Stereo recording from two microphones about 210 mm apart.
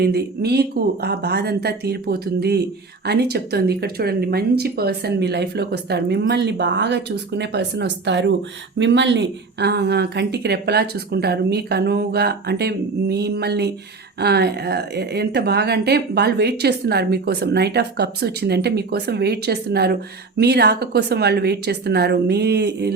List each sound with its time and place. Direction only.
0.0 s a woman's voice: 50° right (ahead or behind)